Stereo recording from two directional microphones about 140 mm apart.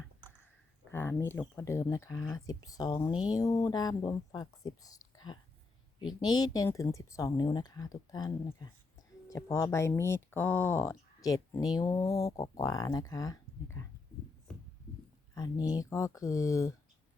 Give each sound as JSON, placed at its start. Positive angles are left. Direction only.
{"t": 0.9, "sound": "speech", "side_deg": 15}
{"t": 15.4, "sound": "speech", "side_deg": 25}